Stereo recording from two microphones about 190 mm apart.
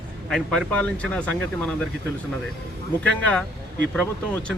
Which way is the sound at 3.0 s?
5° left (ahead or behind).